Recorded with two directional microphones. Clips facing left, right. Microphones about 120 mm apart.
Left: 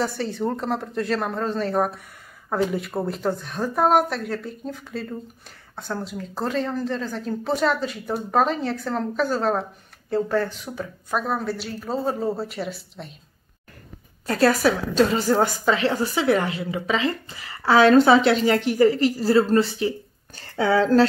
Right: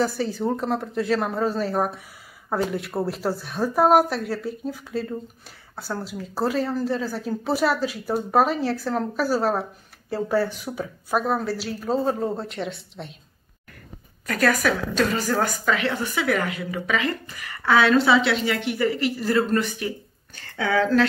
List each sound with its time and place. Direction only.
0.0 s a woman's voice: centre (ahead or behind)
14.2 s a woman's voice: 30° left (ahead or behind)